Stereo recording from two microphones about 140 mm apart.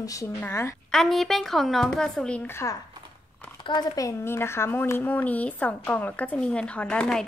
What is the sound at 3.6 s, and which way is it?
Speech, 30° left (ahead or behind).